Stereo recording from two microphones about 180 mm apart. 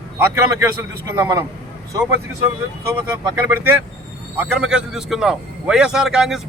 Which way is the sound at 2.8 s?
10° right (ahead or behind).